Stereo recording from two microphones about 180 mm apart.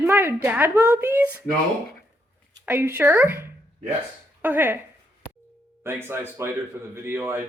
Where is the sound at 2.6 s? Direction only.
10° right (ahead or behind).